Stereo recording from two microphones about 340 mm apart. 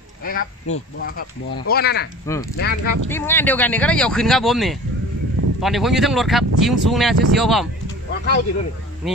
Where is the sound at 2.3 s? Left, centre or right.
Centre.